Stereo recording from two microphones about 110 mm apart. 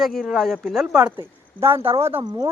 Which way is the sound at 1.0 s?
20° right (ahead or behind).